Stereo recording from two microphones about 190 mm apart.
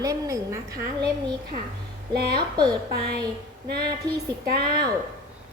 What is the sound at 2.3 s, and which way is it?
Speech, 20° right (ahead or behind).